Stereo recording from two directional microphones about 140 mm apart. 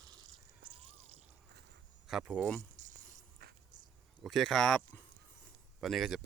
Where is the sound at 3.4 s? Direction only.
90° right.